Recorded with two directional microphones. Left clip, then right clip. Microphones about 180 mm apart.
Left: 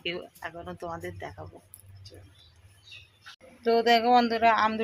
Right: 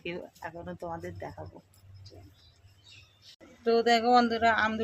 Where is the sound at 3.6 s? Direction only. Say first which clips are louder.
Left 2 dB; centre (ahead or behind).